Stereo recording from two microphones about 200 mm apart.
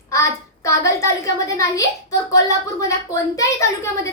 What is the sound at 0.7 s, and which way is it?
A woman's voice, 15° left (ahead or behind).